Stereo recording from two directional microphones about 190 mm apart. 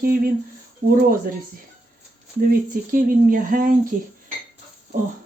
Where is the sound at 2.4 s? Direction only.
45° right (ahead or behind).